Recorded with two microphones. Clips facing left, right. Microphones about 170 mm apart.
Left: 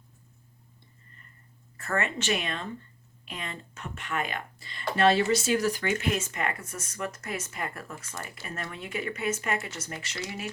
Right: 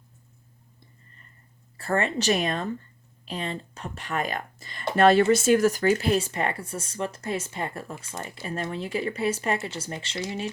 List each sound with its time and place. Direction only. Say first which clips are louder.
1.7 s speech: right 5 dB; 30° right (ahead or behind)